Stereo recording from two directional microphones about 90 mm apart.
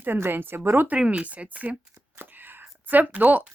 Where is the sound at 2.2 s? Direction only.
20° right (ahead or behind).